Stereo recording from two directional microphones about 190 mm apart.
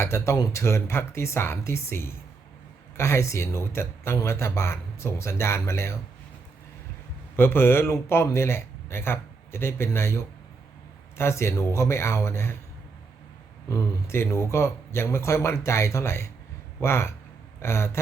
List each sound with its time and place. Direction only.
0.0 s speech: 15° left (ahead or behind)
7.3 s speech: 10° left (ahead or behind)
11.2 s speech: 15° left (ahead or behind)
13.7 s speech: 15° left (ahead or behind)